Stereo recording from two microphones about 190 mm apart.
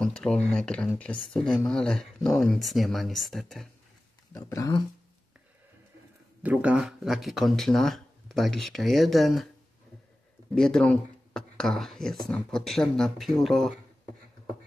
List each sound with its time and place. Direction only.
0.0 s speech: 5° left (ahead or behind)
4.3 s speech: 15° left (ahead or behind)
6.4 s speech: 5° right (ahead or behind)
10.5 s speech: 5° left (ahead or behind)